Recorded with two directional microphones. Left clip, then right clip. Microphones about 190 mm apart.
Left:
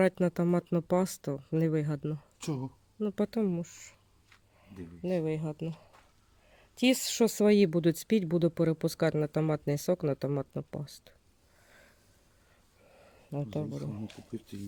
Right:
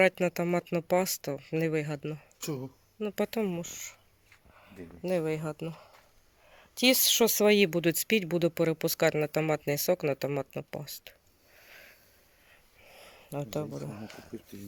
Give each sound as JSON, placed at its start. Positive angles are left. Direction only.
{"t": 0.0, "sound": "speech", "side_deg": 20}
{"t": 5.0, "sound": "speech", "side_deg": 5}
{"t": 12.9, "sound": "speech", "side_deg": 10}
{"t": 14.3, "sound": "speech", "side_deg": 60}